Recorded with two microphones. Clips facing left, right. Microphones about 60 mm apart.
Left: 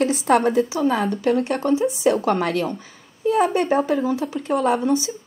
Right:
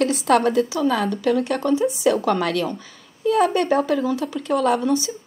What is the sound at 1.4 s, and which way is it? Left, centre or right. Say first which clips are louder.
Speech: even; left.